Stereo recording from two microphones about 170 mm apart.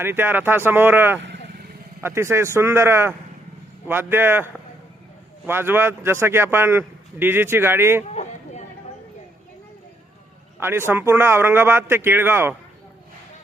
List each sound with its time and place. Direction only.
0.0 s a man's voice: 10° right (ahead or behind)
8.1 s a sound: 40° left (ahead or behind)
10.6 s a man's voice: 15° right (ahead or behind)